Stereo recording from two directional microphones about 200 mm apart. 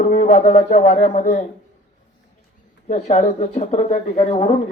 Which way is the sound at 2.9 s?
35° left (ahead or behind).